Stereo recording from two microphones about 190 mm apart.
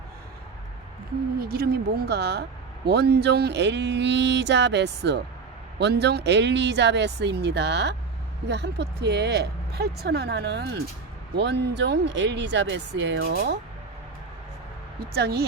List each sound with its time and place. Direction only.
1.4 s speech: 55° right (ahead or behind)
15.1 s speech: 55° right (ahead or behind)